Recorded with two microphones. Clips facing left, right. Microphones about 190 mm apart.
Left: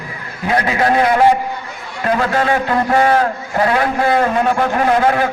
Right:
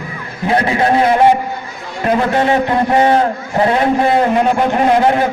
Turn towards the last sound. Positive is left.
turn(degrees=-20)  # may be behind; listen again after turning